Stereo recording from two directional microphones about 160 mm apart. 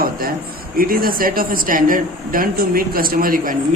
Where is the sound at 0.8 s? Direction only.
65° right (ahead or behind).